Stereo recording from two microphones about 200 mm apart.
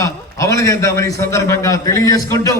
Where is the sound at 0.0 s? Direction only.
15° left (ahead or behind).